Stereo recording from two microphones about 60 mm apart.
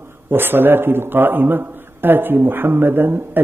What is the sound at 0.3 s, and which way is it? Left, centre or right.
A man's voice, right.